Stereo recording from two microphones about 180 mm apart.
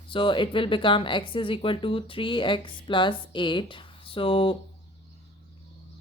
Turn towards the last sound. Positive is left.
turn(degrees=30)  # may be behind; listen again after turning